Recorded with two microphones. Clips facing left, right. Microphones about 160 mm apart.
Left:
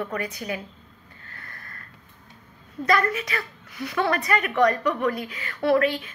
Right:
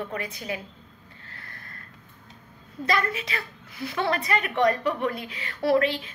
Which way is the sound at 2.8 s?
25° right (ahead or behind).